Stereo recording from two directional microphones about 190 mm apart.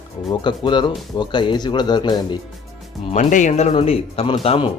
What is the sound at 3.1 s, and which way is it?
Speech, 40° left (ahead or behind).